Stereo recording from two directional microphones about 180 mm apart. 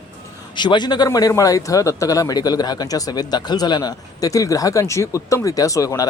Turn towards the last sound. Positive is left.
turn(degrees=20)  # may be behind; listen again after turning